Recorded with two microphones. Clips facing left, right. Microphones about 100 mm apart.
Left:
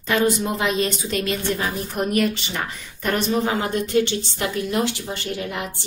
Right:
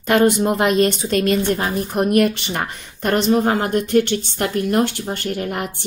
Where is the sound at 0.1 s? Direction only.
55° right (ahead or behind).